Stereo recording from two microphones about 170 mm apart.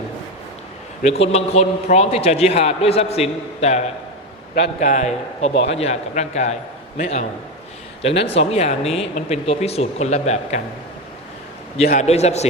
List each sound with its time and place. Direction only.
1.0 s a man's voice: 40° left (ahead or behind)
11.9 s a man's voice: 40° left (ahead or behind)